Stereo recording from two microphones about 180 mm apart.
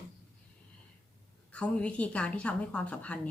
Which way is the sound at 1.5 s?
5° left (ahead or behind).